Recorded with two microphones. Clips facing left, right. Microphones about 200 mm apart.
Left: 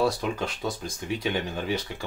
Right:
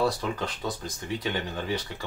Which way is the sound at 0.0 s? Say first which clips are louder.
Left 2 dB; 10° left (ahead or behind).